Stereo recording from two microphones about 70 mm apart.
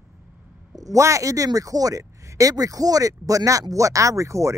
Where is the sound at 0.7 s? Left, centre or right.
Right.